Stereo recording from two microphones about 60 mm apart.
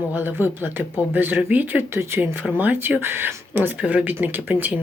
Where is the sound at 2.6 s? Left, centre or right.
Right.